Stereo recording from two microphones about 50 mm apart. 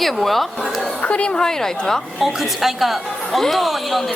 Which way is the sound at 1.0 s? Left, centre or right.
Left.